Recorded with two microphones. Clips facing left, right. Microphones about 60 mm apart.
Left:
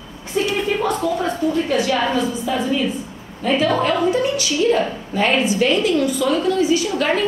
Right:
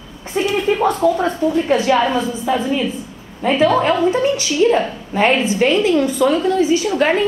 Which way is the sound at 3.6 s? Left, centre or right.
Right.